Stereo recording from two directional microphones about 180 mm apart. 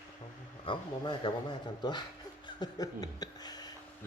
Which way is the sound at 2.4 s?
20° left (ahead or behind).